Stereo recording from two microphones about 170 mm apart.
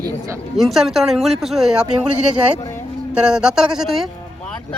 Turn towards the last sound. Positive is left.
turn(degrees=0)  # may be behind; listen again after turning